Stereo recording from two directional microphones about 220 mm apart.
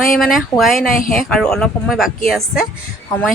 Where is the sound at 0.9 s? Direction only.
40° left (ahead or behind).